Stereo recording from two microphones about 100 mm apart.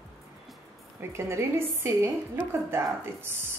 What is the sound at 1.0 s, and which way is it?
Speech, 25° right (ahead or behind).